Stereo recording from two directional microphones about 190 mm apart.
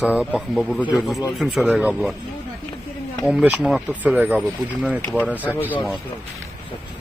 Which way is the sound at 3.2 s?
5° right (ahead or behind).